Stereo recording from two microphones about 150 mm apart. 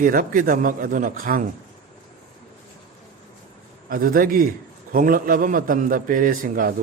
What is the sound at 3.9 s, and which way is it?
A man's voice, 70° right (ahead or behind).